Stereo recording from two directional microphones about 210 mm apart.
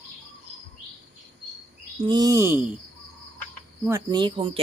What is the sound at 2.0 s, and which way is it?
Speech, 20° right (ahead or behind).